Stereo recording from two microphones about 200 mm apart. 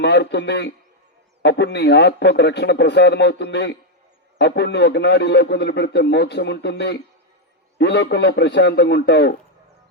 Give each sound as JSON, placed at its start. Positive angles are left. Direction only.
{"t": 0.0, "sound": "a man's voice", "side_deg": 60}